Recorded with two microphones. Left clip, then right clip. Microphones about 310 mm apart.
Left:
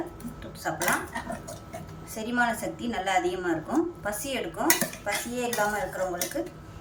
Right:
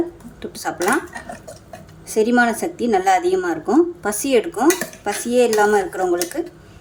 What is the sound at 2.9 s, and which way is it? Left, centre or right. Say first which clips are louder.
A woman's voice: right 11 dB; right.